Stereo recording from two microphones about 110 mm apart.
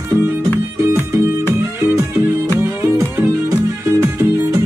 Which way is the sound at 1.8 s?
15° right (ahead or behind).